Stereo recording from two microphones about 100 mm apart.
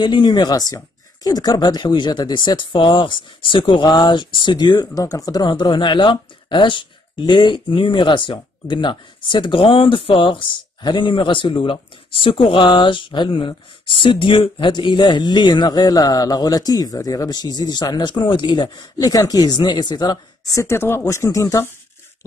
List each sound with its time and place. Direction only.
0.0 s speech: 45° left (ahead or behind)
4.9 s speech: 35° left (ahead or behind)
20.5 s speech: 25° left (ahead or behind)